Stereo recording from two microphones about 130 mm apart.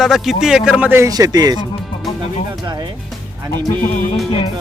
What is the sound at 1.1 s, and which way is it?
Speech, 30° right (ahead or behind).